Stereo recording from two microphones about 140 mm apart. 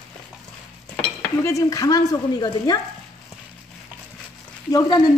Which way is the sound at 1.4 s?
25° left (ahead or behind).